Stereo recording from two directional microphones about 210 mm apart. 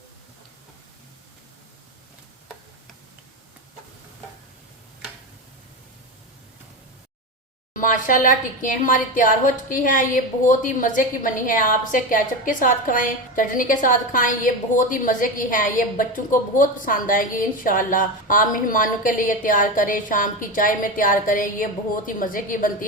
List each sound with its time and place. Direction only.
7.7 s a woman's voice: 40° left (ahead or behind)